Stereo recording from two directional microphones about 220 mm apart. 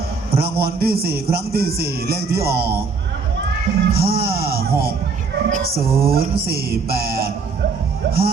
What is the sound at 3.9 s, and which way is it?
Music, 45° right (ahead or behind).